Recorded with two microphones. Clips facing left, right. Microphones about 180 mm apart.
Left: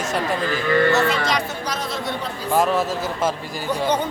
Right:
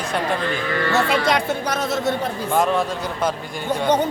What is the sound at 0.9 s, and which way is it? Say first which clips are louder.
Speech: right 1 dB; 55° right (ahead or behind).